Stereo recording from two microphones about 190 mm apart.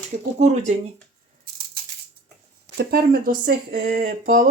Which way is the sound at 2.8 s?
55° right (ahead or behind).